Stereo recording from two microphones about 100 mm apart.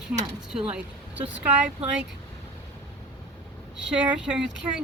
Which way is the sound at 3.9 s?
10° right (ahead or behind).